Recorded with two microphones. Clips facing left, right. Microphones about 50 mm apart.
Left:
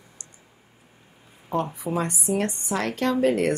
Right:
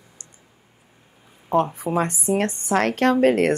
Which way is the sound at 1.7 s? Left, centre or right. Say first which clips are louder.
Right 4 dB; right.